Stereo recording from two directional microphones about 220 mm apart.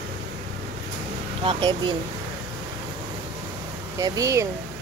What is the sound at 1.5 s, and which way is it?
Speech, 20° right (ahead or behind).